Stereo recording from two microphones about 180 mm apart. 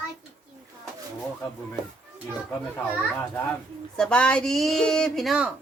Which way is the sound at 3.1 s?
10° left (ahead or behind).